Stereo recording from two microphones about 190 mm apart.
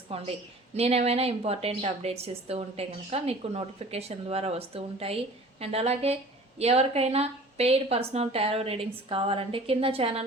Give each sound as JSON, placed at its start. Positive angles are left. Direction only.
{"t": 0.1, "sound": "a woman's voice", "side_deg": -30}